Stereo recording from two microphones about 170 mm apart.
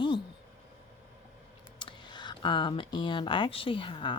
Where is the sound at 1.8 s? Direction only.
25° left (ahead or behind).